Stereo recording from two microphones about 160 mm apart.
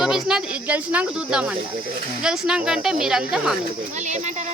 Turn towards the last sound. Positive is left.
turn(degrees=-5)  # may be behind; listen again after turning